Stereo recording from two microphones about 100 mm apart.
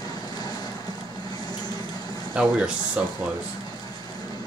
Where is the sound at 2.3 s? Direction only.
10° right (ahead or behind).